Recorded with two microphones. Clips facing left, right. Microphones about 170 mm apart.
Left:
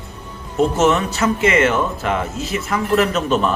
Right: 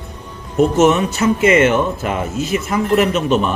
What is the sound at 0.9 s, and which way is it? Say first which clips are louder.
A man's voice: right 3 dB; 25° right (ahead or behind).